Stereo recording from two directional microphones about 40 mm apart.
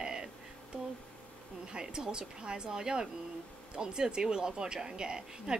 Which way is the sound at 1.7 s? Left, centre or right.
Centre.